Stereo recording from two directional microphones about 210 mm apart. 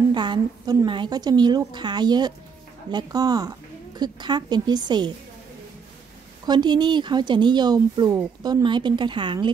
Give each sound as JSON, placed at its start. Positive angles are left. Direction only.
{"t": 0.1, "sound": "speech", "side_deg": -20}
{"t": 6.4, "sound": "speech", "side_deg": -20}